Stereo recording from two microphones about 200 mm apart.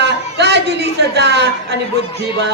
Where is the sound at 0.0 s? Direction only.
60° right (ahead or behind).